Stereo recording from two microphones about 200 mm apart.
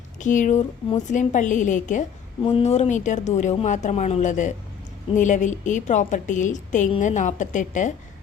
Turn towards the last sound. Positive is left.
turn(degrees=40)  # may be behind; listen again after turning